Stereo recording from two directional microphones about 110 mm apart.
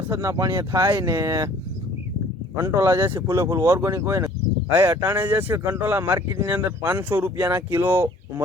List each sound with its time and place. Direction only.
0.1 s speech: 30° right (ahead or behind)
2.6 s speech: 25° right (ahead or behind)